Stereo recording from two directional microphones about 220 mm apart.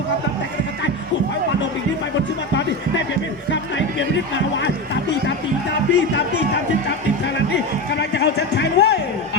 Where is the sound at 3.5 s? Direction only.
55° left (ahead or behind).